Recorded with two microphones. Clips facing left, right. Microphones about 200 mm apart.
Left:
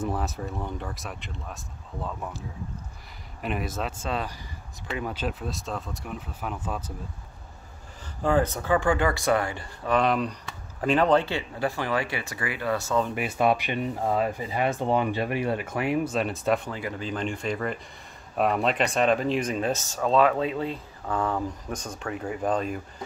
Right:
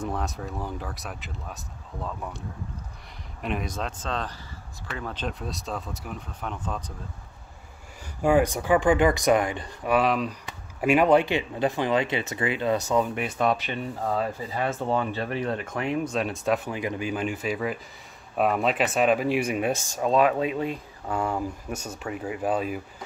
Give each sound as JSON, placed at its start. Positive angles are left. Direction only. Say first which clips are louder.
{"t": 0.0, "sound": "speech", "louder": "left 1 dB", "side_deg": 5}
{"t": 3.4, "sound": "speech", "louder": "even", "side_deg": 5}
{"t": 8.2, "sound": "speech", "louder": "right 3 dB", "side_deg": -15}
{"t": 9.9, "sound": "speech", "louder": "even", "side_deg": 0}
{"t": 13.1, "sound": "speech", "louder": "left 1 dB", "side_deg": 5}
{"t": 16.7, "sound": "speech", "louder": "right 3 dB", "side_deg": -15}